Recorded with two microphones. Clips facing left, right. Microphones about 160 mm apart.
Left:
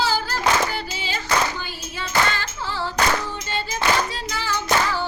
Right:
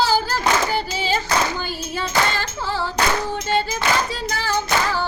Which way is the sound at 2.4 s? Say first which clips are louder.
Right 3 dB; 40° right (ahead or behind).